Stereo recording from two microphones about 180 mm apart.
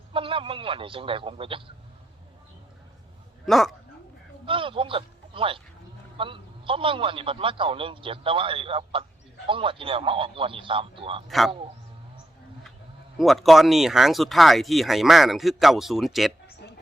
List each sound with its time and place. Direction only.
0.1 s a man's voice: 30° right (ahead or behind)
3.4 s speech: centre (ahead or behind)
4.4 s a man's voice: 30° right (ahead or behind)
11.3 s speech: centre (ahead or behind)
13.1 s speech: centre (ahead or behind)